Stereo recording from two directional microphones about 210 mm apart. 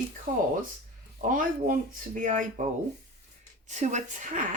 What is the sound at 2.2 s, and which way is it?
Speech, 40° right (ahead or behind).